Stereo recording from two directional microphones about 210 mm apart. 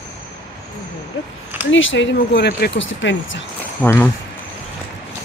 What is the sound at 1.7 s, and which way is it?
Speech, 65° left (ahead or behind).